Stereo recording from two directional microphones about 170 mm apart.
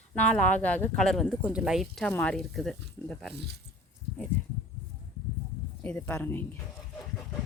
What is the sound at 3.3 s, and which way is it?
Speech, 80° right.